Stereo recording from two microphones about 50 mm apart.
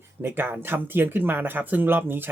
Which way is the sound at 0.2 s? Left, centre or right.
Right.